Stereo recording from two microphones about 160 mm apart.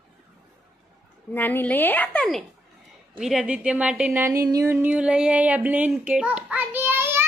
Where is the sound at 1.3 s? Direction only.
10° left (ahead or behind).